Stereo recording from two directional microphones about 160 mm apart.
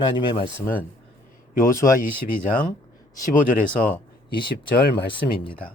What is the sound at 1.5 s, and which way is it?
Speech, 60° left (ahead or behind).